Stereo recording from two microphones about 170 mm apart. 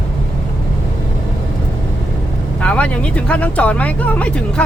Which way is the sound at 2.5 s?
5° left (ahead or behind).